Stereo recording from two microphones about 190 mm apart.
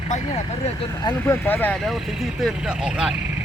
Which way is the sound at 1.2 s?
10° left (ahead or behind).